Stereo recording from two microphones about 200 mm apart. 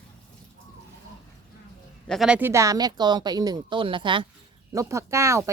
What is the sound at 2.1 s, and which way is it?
Speech, centre (ahead or behind).